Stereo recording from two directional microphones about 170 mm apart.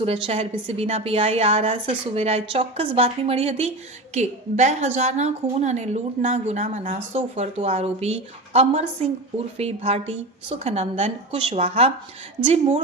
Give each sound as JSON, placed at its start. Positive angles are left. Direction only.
{"t": 0.0, "sound": "a woman's voice", "side_deg": -35}